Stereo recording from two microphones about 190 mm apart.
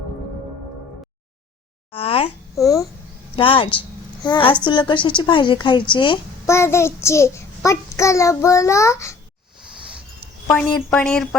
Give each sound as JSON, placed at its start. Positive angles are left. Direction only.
{"t": 1.9, "sound": "a woman's voice", "side_deg": 30}
{"t": 3.3, "sound": "a woman's voice", "side_deg": 25}
{"t": 6.5, "sound": "a child's voice", "side_deg": 15}
{"t": 10.4, "sound": "speech", "side_deg": 5}